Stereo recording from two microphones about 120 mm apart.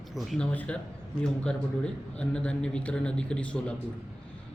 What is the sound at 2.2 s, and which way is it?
A man's voice, 10° left (ahead or behind).